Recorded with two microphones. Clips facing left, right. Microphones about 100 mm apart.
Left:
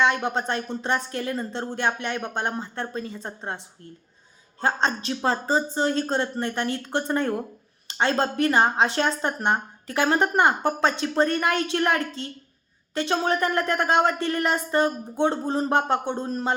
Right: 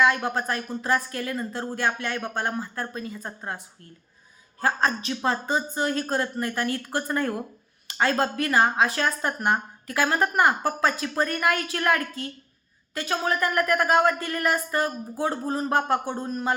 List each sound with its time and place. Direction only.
0.0 s speech: 25° left (ahead or behind)
4.6 s speech: 30° left (ahead or behind)